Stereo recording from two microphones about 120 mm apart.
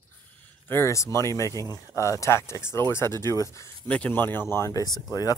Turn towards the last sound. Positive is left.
turn(degrees=30)  # may be behind; listen again after turning